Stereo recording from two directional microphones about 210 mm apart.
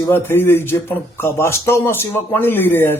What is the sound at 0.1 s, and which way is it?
Speech, 10° left (ahead or behind).